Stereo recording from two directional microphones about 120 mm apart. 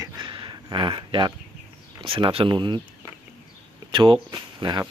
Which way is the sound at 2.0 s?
45° right (ahead or behind).